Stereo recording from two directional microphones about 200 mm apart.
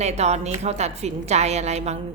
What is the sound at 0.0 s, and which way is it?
A woman's voice, 35° right (ahead or behind).